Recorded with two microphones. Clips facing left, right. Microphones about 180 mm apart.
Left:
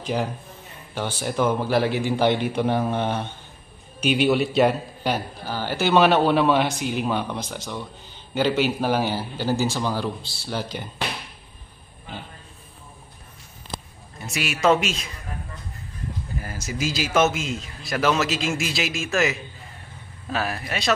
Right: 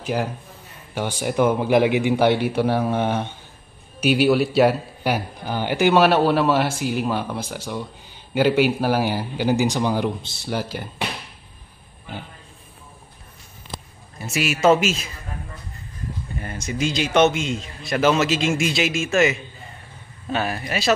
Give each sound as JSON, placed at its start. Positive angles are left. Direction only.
{"t": 0.0, "sound": "a man's voice", "side_deg": -5}
{"t": 10.5, "sound": "a man's voice", "side_deg": -10}
{"t": 14.1, "sound": "a man's voice", "side_deg": 0}
{"t": 16.3, "sound": "a man's voice", "side_deg": 5}